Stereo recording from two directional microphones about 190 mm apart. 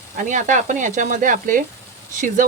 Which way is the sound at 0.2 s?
40° right (ahead or behind).